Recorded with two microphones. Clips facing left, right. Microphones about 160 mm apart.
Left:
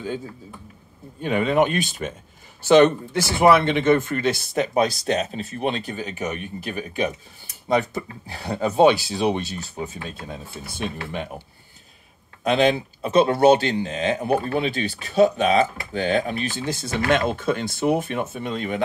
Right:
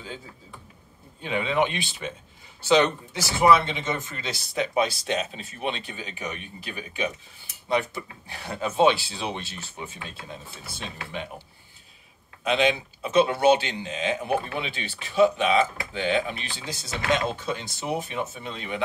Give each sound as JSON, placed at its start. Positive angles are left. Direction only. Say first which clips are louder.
{"t": 1.2, "sound": "speech", "louder": "left 5 dB", "side_deg": 50}
{"t": 10.8, "sound": "speech", "louder": "left 6 dB", "side_deg": 55}
{"t": 12.4, "sound": "speech", "louder": "left 4 dB", "side_deg": 40}